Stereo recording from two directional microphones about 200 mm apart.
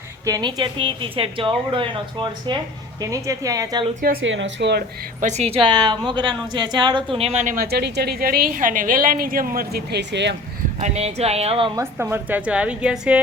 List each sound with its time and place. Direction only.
0.3 s a woman's voice: 20° right (ahead or behind)
4.2 s speech: 70° right (ahead or behind)
5.2 s a woman's voice: 35° right (ahead or behind); by 10.3 s 60° right (ahead or behind)
10.8 s speech: 35° right (ahead or behind)
11.8 s a woman's voice: 10° right (ahead or behind)